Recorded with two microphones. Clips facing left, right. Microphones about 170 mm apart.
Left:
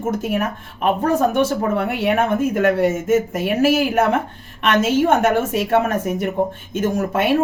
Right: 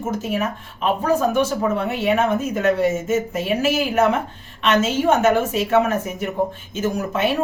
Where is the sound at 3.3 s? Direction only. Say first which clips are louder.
Left 3 dB; 50° left (ahead or behind).